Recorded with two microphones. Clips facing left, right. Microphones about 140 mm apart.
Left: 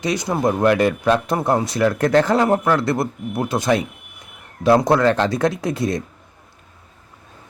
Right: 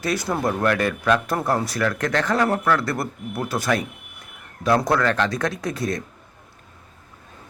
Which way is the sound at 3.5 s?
20° left (ahead or behind).